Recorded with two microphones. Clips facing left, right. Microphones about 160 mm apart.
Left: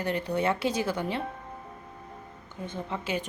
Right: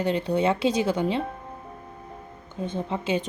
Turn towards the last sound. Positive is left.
turn(degrees=-20)  # may be behind; listen again after turning